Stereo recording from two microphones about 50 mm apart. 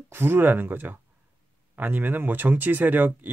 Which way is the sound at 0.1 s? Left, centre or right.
Right.